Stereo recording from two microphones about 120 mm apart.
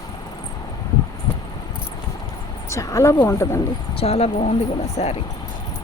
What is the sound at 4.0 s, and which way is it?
Speech, 60° left (ahead or behind).